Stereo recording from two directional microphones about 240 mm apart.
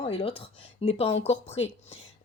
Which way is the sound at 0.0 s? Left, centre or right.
Left.